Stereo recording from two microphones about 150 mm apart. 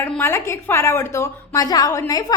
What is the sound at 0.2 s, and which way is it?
A woman's voice, 15° left (ahead or behind).